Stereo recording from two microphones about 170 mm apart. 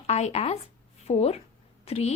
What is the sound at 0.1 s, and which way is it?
A woman's voice, 40° left (ahead or behind).